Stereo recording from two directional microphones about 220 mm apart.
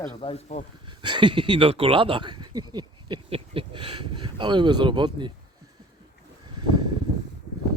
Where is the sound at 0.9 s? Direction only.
20° right (ahead or behind).